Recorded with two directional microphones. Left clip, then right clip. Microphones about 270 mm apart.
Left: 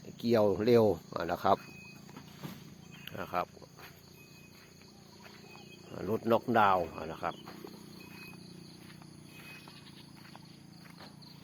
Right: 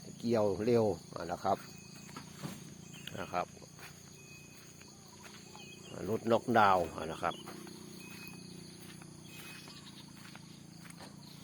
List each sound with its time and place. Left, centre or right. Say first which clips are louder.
0.2 s speech: left 4 dB; left
3.0 s speech: left 2 dB; centre
5.9 s speech: left 2 dB; centre